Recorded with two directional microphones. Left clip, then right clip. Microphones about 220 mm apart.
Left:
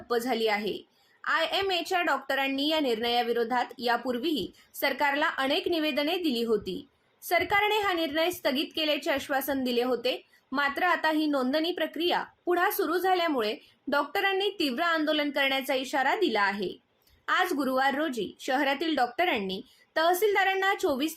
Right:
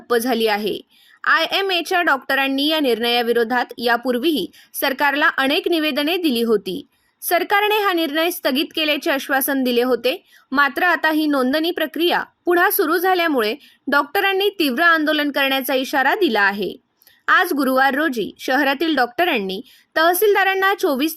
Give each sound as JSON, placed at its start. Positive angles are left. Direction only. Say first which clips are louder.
{"t": 0.1, "sound": "a woman's voice", "louder": "right 9 dB", "side_deg": -50}